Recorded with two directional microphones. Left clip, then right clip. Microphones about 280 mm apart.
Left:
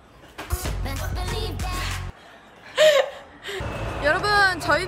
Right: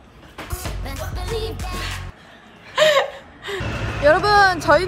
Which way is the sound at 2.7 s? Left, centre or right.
Right.